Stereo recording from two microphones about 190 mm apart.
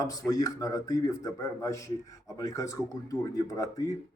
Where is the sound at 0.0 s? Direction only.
20° left (ahead or behind).